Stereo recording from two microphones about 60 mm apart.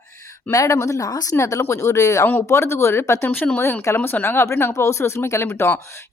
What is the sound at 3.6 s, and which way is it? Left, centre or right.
Speech, left.